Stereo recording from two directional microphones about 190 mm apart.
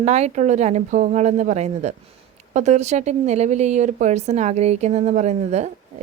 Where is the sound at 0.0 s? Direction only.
35° right (ahead or behind).